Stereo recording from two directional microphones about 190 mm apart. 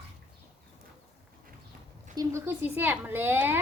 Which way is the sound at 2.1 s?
20° right (ahead or behind).